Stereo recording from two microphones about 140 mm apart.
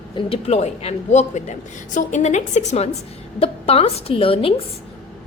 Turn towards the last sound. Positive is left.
turn(degrees=40)  # may be behind; listen again after turning